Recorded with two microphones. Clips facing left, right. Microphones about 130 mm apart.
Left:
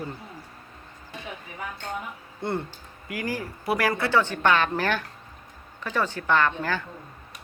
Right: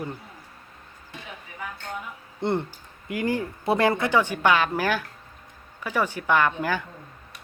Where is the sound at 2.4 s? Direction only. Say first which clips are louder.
Right 4 dB; 20° right (ahead or behind).